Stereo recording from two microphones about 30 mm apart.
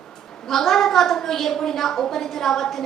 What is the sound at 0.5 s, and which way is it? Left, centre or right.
A woman's voice, centre.